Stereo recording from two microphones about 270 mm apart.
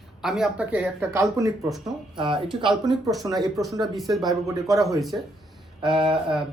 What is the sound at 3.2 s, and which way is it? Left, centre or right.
Speech, centre.